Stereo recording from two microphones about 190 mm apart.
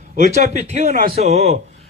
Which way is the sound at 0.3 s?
35° right (ahead or behind).